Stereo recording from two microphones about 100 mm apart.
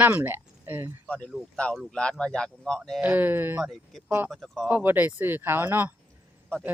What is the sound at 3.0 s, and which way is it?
Speech, 15° right (ahead or behind).